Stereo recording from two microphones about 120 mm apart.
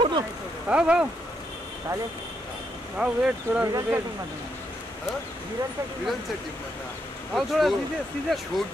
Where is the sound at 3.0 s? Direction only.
10° right (ahead or behind).